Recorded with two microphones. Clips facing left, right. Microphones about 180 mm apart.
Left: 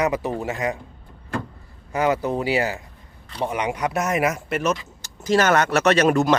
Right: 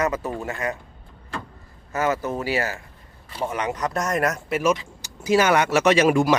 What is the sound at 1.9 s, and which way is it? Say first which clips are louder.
Speech: left 3 dB; 15° left (ahead or behind).